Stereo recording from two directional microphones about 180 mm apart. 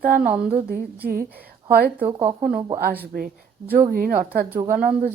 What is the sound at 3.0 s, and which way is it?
A woman's voice, 55° right (ahead or behind).